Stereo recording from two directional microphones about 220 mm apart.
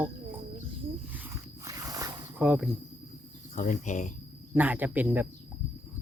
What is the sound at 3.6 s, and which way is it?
Speech, 35° left (ahead or behind).